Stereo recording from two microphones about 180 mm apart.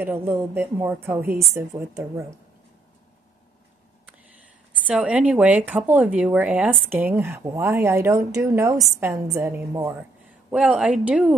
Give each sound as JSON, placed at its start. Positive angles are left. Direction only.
{"t": 0.0, "sound": "speech", "side_deg": -10}
{"t": 4.8, "sound": "a woman's voice", "side_deg": -5}